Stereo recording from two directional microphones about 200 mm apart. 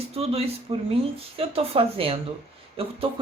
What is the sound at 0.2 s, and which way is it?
Speech, 30° right (ahead or behind).